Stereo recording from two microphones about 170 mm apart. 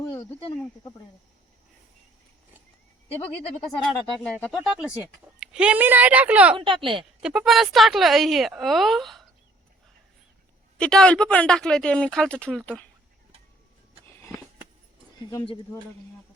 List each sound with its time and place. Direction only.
0.1 s a sound: 30° left (ahead or behind)
3.7 s speech: 5° left (ahead or behind)
4.6 s speech: 5° right (ahead or behind)
6.7 s a woman's voice: 30° right (ahead or behind)
7.2 s speech: 5° right (ahead or behind)
10.8 s speech: 5° left (ahead or behind)
15.3 s speech: 20° left (ahead or behind)